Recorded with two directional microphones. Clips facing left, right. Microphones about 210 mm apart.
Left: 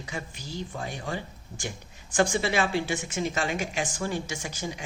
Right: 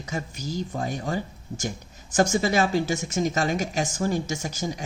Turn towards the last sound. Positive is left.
turn(degrees=-40)  # may be behind; listen again after turning